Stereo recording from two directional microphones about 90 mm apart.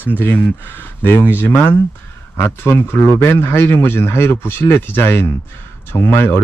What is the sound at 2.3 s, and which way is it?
Speech, 30° left (ahead or behind).